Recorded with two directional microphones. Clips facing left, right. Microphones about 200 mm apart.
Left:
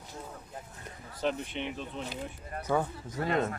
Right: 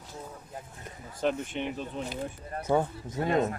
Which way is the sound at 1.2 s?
50° right (ahead or behind).